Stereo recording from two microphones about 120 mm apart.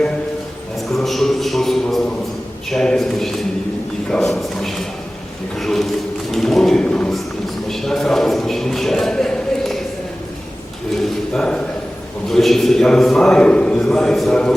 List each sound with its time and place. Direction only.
0.9 s a sound: centre (ahead or behind)
2.6 s a man's voice: 5° left (ahead or behind)
11.3 s a man's voice: 5° left (ahead or behind)